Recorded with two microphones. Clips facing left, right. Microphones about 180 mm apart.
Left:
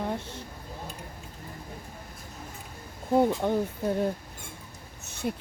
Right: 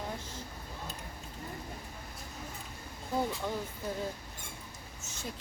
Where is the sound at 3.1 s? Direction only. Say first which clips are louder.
Left 10 dB; 60° left (ahead or behind).